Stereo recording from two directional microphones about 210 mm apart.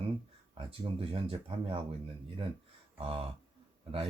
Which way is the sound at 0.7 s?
25° right (ahead or behind).